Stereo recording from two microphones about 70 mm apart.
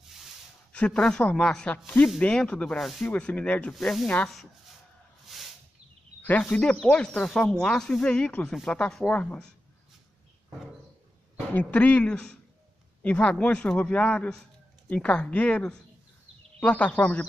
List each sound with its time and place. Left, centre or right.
0.1 s a sound: centre
0.7 s speech: centre
3.1 s a man's voice: centre
3.7 s speech: centre
5.2 s a sound: centre
6.4 s speech: centre
11.3 s a man's voice: left